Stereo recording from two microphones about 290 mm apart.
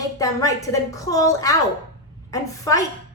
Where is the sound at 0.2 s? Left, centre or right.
Centre.